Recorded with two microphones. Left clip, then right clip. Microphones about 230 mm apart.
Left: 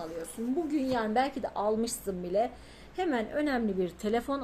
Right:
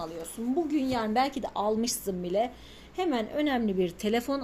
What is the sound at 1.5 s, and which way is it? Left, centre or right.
Speech, right.